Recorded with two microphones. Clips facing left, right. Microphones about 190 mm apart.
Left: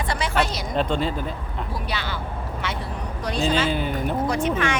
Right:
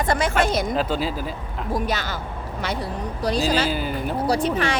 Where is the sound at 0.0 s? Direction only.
45° right (ahead or behind).